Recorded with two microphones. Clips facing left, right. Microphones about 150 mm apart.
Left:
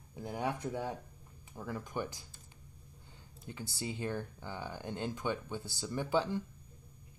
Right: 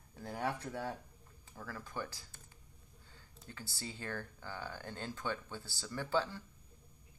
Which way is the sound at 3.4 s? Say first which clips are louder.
Left 6 dB; 15° left (ahead or behind).